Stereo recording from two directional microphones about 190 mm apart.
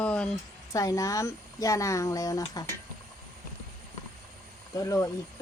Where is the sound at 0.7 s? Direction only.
15° left (ahead or behind).